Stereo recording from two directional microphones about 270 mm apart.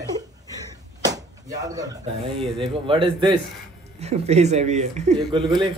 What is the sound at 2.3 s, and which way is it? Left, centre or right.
A man's voice, centre.